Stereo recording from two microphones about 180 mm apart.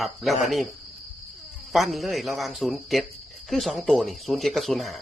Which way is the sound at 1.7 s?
Centre (ahead or behind).